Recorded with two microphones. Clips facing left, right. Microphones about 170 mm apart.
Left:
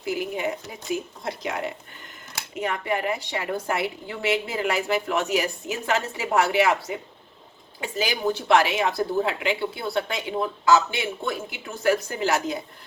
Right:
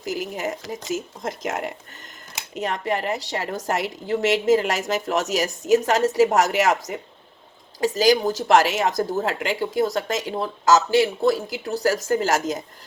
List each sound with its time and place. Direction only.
0.0 s a woman's voice: 40° right (ahead or behind)
2.6 s a woman's voice: 35° right (ahead or behind)